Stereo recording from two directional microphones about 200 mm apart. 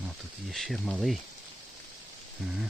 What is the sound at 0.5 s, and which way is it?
Speech, centre (ahead or behind).